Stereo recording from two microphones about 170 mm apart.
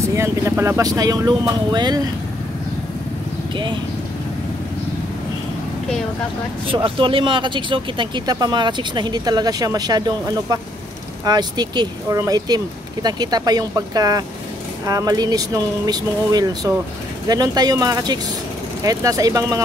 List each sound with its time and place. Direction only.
0.0 s speech: 15° right (ahead or behind)
6.7 s speech: 30° right (ahead or behind)